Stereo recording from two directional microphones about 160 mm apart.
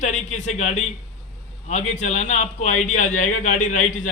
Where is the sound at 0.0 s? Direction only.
45° left (ahead or behind).